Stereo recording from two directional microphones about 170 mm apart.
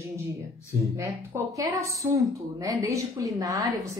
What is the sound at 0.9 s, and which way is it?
A woman's voice, 20° right (ahead or behind).